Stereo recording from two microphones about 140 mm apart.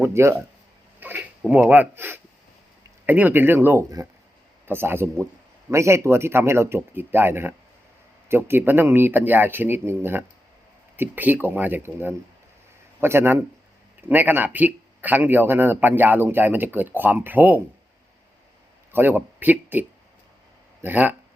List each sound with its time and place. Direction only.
0.0 s a man's voice: 20° right (ahead or behind)
18.9 s speech: 15° right (ahead or behind)
20.8 s a man's voice: 10° right (ahead or behind)